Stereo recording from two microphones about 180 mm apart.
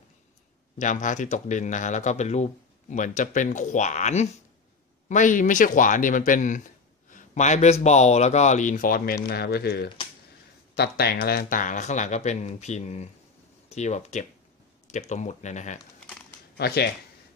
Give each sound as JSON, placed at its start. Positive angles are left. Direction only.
{"t": 0.7, "sound": "a man's voice", "side_deg": 45}
{"t": 16.5, "sound": "speech", "side_deg": 60}